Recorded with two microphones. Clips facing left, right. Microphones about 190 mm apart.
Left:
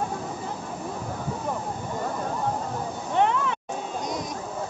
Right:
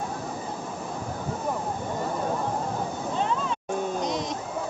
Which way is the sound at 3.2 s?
65° left (ahead or behind).